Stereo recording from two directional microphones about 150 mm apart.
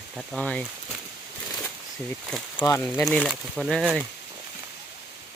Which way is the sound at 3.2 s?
5° right (ahead or behind).